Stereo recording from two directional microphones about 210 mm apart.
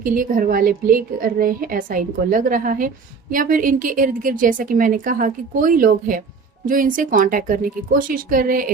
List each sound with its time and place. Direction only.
0.0 s a woman's voice: 40° right (ahead or behind)